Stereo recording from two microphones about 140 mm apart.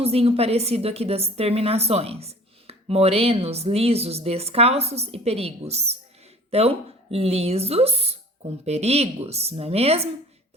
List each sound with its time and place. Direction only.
0.0 s a woman's voice: 45° right (ahead or behind)